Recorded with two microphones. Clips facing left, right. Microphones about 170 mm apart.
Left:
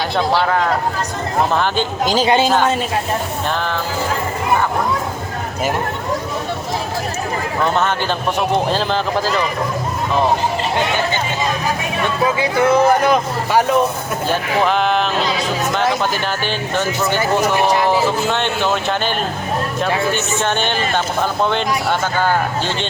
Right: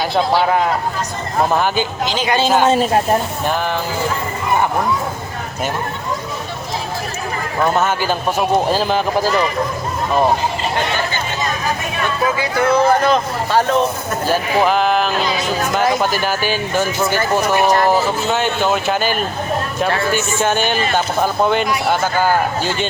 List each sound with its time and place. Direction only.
0.3 s speech: 15° right (ahead or behind)
2.0 s a man's voice: 35° left (ahead or behind)
7.6 s speech: 5° right (ahead or behind)
12.2 s speech: 25° left (ahead or behind)
14.3 s speech: 5° right (ahead or behind)
18.3 s speech: 5° right (ahead or behind)
20.4 s speech: 5° right (ahead or behind)